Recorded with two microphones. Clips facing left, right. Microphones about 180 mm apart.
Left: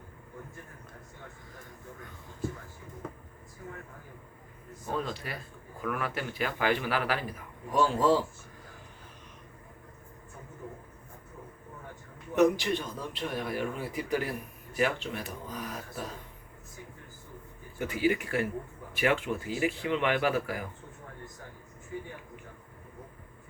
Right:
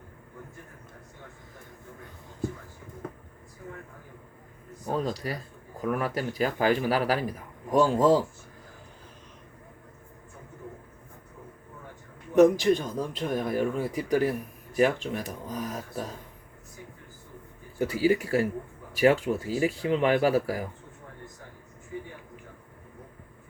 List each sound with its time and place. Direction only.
4.9 s a man's voice: 40° right (ahead or behind)
12.4 s a man's voice: 40° right (ahead or behind)
17.7 s a man's voice: 35° right (ahead or behind)